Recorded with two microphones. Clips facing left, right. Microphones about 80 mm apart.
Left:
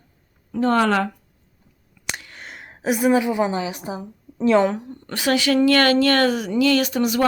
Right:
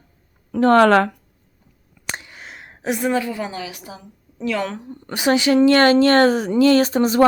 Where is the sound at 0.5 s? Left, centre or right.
Right.